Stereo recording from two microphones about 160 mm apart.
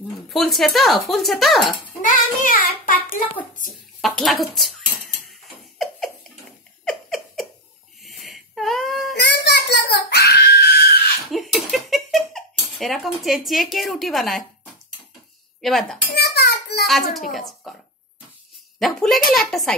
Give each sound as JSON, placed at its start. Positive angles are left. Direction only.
{"t": 0.3, "sound": "speech", "side_deg": 0}
{"t": 2.0, "sound": "child singing", "side_deg": 55}
{"t": 4.0, "sound": "speech", "side_deg": 0}
{"t": 6.8, "sound": "a sound", "side_deg": 0}
{"t": 8.0, "sound": "wheeze", "side_deg": 0}
{"t": 9.1, "sound": "screaming", "side_deg": 90}
{"t": 11.3, "sound": "a sound", "side_deg": 0}
{"t": 15.6, "sound": "speech", "side_deg": 0}
{"t": 16.2, "sound": "child singing", "side_deg": 90}
{"t": 16.8, "sound": "a child's voice", "side_deg": 0}
{"t": 18.8, "sound": "speech", "side_deg": 0}